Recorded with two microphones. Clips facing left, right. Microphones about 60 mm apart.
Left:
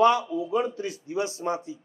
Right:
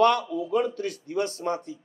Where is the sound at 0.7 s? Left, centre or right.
Right.